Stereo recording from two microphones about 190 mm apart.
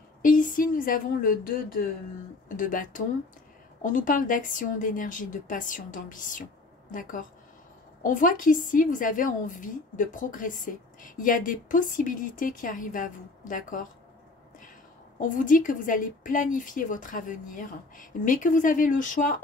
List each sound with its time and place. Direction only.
0.2 s a woman's voice: 45° left (ahead or behind)
15.1 s a woman's voice: 45° left (ahead or behind)